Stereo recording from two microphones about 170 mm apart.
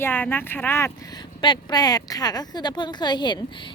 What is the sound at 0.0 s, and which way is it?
Speech, 10° left (ahead or behind).